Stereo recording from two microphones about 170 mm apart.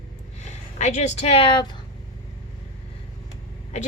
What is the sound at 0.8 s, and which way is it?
Speech, 45° left (ahead or behind).